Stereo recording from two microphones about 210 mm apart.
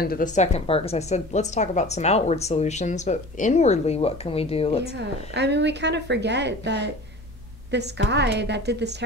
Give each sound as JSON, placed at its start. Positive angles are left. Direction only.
{"t": 0.0, "sound": "a woman's voice", "side_deg": 40}
{"t": 4.9, "sound": "a woman's voice", "side_deg": -55}